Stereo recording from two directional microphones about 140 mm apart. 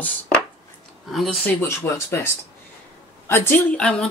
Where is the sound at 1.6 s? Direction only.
20° left (ahead or behind).